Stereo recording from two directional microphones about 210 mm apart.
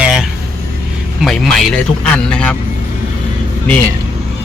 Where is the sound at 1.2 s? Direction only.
Centre (ahead or behind).